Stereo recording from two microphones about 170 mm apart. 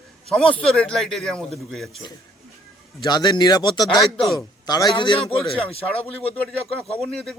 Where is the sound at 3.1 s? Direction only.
25° left (ahead or behind).